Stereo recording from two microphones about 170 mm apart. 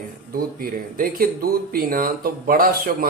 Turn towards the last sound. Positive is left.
turn(degrees=-55)  # may be behind; listen again after turning